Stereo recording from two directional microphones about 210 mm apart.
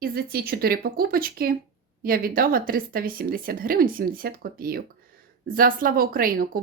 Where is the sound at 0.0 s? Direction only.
45° right (ahead or behind).